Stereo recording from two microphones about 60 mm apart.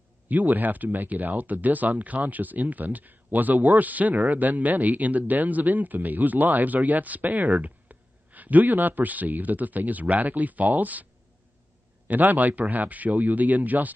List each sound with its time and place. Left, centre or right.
0.3 s speech: right
7.4 s speech: centre
7.9 s a man's voice: right
12.1 s speech: right